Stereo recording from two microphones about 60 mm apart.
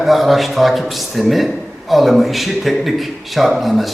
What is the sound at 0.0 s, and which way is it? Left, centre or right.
A man's voice, centre.